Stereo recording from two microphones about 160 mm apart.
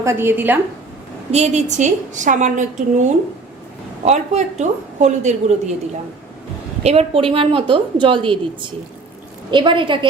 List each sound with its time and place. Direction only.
0.0 s a woman's voice: 15° right (ahead or behind)
1.3 s a woman's voice: 45° right (ahead or behind)
6.8 s a woman's voice: 35° right (ahead or behind)
9.5 s a woman's voice: 30° right (ahead or behind)